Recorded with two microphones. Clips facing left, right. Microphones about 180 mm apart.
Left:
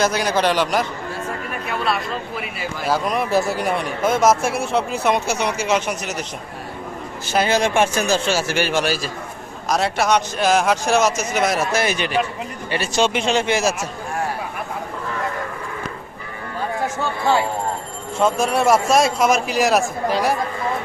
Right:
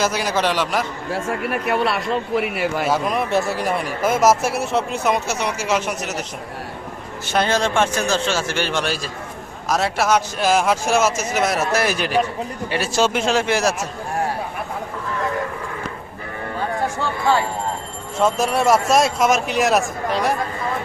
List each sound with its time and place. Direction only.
0.0 s speech: 5° right (ahead or behind)
1.1 s speech: 70° right (ahead or behind)
2.9 s speech: centre (ahead or behind)
7.3 s a man's voice: 10° left (ahead or behind)
18.2 s speech: centre (ahead or behind)